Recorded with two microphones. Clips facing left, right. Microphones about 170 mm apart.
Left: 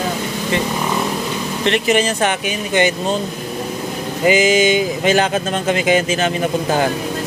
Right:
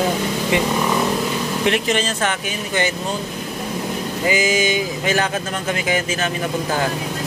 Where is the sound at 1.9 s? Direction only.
15° left (ahead or behind).